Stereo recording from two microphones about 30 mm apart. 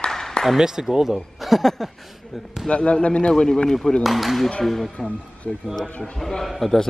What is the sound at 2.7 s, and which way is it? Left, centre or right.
Speech, left.